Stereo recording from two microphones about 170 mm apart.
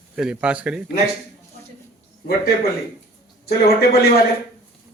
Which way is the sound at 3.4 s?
65° left (ahead or behind).